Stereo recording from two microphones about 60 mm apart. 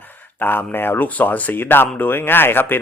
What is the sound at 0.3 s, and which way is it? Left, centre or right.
Speech, left.